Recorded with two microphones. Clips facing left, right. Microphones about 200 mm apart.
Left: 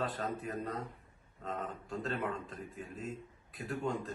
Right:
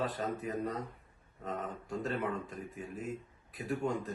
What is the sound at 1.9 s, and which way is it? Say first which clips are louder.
A man's voice: right 2 dB; 15° right (ahead or behind).